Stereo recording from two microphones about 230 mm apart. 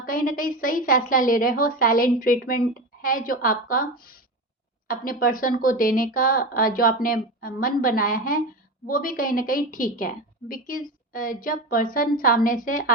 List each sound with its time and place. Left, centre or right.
0.0 s a woman's voice: left